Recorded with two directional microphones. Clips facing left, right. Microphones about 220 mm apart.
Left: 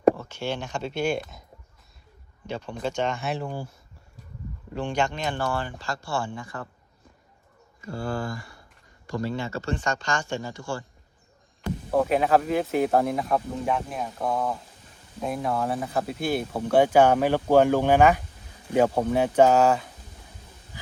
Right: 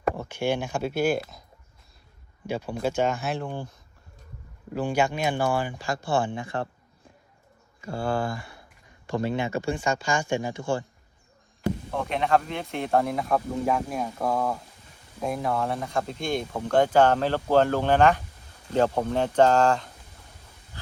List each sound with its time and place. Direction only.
0.2 s speech: 15° right (ahead or behind)
2.5 s speech: 10° right (ahead or behind); by 3.8 s 5° left (ahead or behind)
4.7 s speech: 5° right (ahead or behind); by 6.7 s 25° right (ahead or behind)
9.0 s speech: 20° right (ahead or behind)
12.0 s speech: 5° left (ahead or behind)